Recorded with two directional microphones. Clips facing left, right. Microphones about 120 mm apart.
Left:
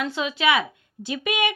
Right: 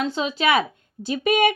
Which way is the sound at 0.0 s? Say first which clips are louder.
Right 1 dB; 30° right (ahead or behind).